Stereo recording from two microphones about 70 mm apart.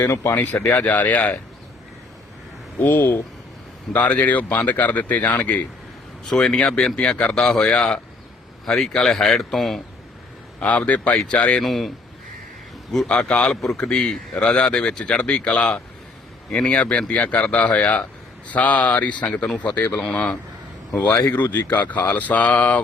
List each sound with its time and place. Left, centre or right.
0.0 s speech: left
0.7 s speech: left
2.8 s speech: left
6.2 s a man's voice: centre
10.6 s a man's voice: left
11.6 s speech: centre
13.1 s a man's voice: centre
21.2 s speech: left